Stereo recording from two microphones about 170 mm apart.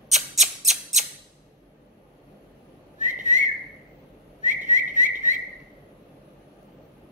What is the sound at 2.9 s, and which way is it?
Whistling, 45° right (ahead or behind).